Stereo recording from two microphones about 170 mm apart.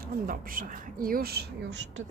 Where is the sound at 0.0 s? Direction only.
55° right (ahead or behind); by 2.0 s 80° right.